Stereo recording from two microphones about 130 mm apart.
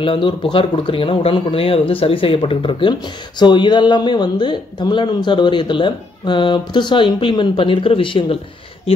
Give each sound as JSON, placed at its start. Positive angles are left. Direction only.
{"t": 0.0, "sound": "speech", "side_deg": 40}